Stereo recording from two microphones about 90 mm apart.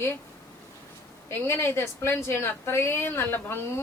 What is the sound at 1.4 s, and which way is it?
Speech, 25° left (ahead or behind).